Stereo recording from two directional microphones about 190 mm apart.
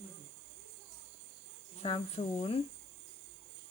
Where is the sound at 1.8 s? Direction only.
30° left (ahead or behind).